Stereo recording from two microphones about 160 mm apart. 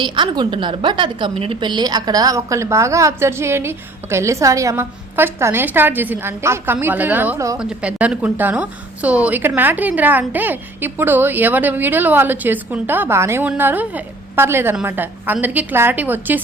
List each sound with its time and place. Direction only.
0.0 s a woman's voice: 30° right (ahead or behind)
7.6 s a woman's voice: 5° right (ahead or behind)